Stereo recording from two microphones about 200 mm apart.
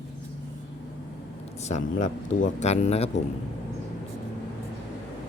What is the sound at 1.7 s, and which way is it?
Speech, 40° left (ahead or behind).